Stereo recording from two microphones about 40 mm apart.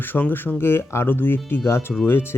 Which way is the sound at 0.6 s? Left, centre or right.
Left.